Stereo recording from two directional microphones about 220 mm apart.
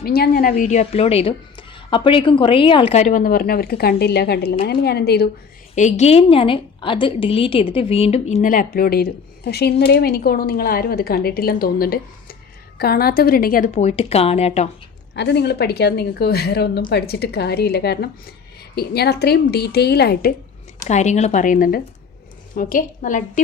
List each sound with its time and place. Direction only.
0.0 s a woman's voice: 45° left (ahead or behind)
5.7 s a woman's voice: 30° left (ahead or behind)
15.1 s a woman's voice: 50° left (ahead or behind)
20.8 s a woman's voice: 30° left (ahead or behind)